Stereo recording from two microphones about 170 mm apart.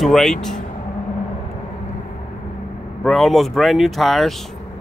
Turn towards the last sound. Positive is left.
turn(degrees=0)  # may be behind; listen again after turning